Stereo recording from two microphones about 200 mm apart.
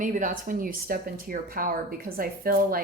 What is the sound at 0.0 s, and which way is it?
Speech, 40° right (ahead or behind).